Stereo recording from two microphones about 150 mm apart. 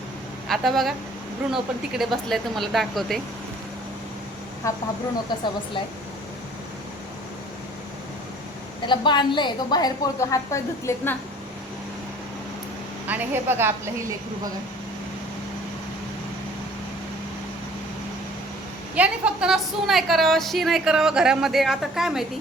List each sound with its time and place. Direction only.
0.4 s a woman's voice: centre (ahead or behind)
4.6 s a woman's voice: 20° left (ahead or behind)
8.9 s a woman's voice: 30° left (ahead or behind); by 11.2 s 15° left (ahead or behind)
13.1 s a woman's voice: 10° right (ahead or behind)
18.9 s a woman's voice: 10° right (ahead or behind)